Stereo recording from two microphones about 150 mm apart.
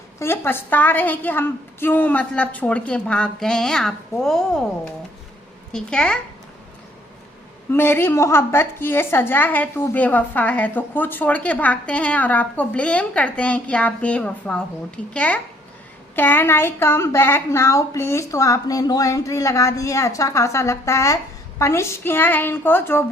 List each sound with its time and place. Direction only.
0.2 s a woman's voice: 15° left (ahead or behind)
5.7 s a woman's voice: 5° left (ahead or behind)
7.7 s a woman's voice: 15° left (ahead or behind)